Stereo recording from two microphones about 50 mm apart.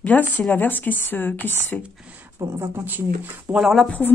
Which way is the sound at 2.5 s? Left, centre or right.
Right.